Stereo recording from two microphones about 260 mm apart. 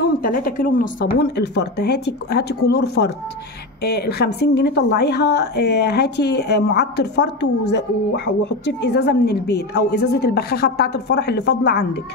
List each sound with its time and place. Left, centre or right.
0.2 s speech: left